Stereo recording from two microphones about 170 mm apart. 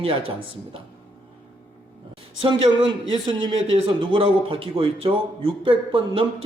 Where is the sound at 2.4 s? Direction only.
30° right (ahead or behind).